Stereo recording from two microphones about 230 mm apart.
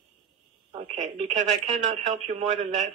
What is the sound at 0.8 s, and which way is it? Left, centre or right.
Speech, right.